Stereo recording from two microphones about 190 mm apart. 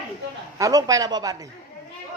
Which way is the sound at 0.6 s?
20° right (ahead or behind).